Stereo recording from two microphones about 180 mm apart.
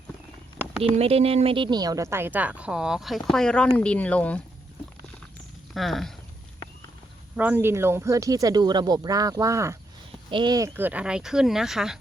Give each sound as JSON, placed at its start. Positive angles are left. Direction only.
{"t": 0.8, "sound": "speech", "side_deg": -35}
{"t": 5.7, "sound": "speech", "side_deg": 0}
{"t": 7.3, "sound": "speech", "side_deg": -10}
{"t": 10.8, "sound": "speech", "side_deg": -10}